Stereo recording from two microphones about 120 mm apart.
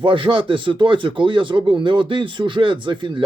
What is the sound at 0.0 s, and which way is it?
Speech, 45° right (ahead or behind).